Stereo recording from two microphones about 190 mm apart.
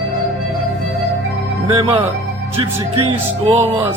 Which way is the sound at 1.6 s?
25° right (ahead or behind).